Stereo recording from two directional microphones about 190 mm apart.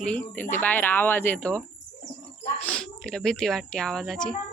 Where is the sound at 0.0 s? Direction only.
10° left (ahead or behind).